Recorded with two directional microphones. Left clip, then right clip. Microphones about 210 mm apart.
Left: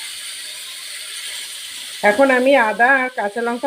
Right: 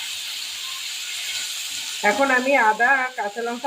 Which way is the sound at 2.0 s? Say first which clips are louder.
Left 5 dB; 45° left (ahead or behind).